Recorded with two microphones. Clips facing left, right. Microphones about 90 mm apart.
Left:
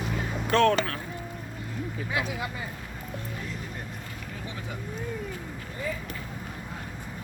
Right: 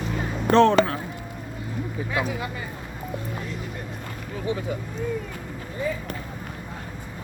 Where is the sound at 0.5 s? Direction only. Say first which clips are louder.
Right 6 dB; 25° right (ahead or behind).